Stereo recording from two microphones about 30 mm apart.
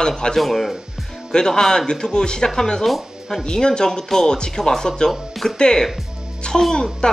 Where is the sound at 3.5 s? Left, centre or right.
Left.